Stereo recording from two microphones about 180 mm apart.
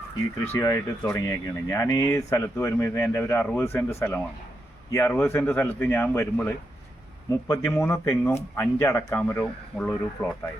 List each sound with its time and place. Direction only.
0.5 s speech: 20° left (ahead or behind)
10.2 s speech: 20° left (ahead or behind)